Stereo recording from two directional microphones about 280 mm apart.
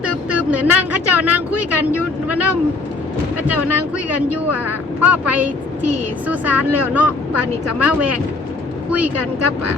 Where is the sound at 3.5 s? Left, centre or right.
Right.